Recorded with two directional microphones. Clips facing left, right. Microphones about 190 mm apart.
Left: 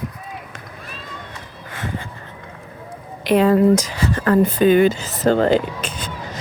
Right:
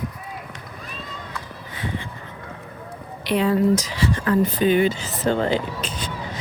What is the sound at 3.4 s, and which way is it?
Speech, 45° left (ahead or behind).